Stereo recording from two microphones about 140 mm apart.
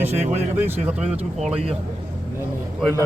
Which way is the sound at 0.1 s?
55° right (ahead or behind).